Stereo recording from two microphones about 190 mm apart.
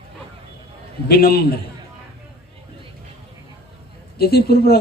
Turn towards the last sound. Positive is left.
turn(degrees=55)  # may be behind; listen again after turning